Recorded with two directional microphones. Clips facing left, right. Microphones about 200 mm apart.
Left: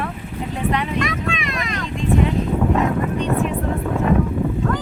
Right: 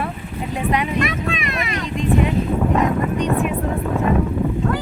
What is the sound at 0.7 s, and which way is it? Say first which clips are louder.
Speech: right 2 dB; 10° right (ahead or behind).